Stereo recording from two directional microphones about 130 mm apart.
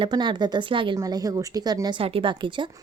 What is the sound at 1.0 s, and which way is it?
A woman's voice, 30° right (ahead or behind).